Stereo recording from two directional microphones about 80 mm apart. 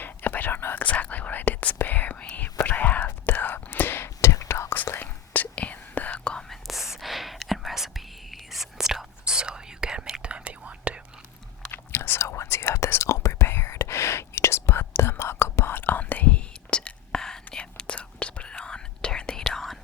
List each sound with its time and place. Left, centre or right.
0.0 s whispering: left
6.5 s whispering: centre
11.7 s whispering: left; by 19.8 s centre